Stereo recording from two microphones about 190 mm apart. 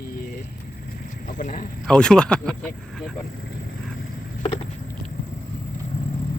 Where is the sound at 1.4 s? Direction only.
45° left (ahead or behind).